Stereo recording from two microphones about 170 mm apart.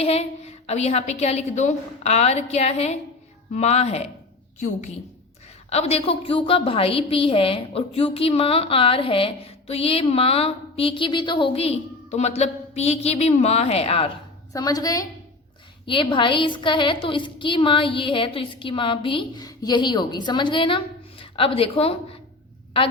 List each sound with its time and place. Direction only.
0.0 s a woman's voice: 35° left (ahead or behind)
5.7 s a woman's voice: 35° left (ahead or behind)
14.5 s a woman's voice: 20° left (ahead or behind)